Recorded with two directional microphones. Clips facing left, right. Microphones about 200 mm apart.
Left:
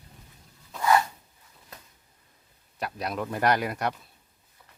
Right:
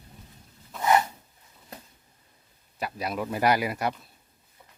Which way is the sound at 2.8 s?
Centre (ahead or behind).